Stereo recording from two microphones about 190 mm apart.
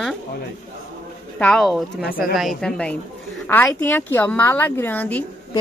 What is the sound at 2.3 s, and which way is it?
A woman's voice, centre (ahead or behind).